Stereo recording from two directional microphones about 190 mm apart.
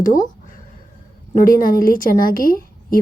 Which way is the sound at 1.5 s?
45° left (ahead or behind).